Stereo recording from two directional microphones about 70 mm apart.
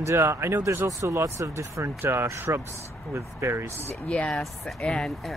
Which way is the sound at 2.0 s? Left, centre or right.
Right.